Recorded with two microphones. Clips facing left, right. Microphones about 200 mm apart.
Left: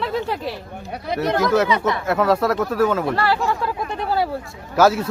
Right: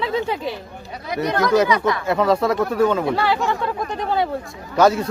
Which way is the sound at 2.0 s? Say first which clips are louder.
Even; centre (ahead or behind).